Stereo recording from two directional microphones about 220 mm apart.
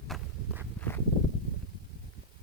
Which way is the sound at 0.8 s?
10° left (ahead or behind).